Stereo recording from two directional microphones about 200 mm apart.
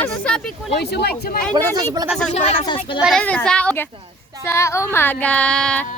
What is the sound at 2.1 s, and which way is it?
Speech, 5° left (ahead or behind).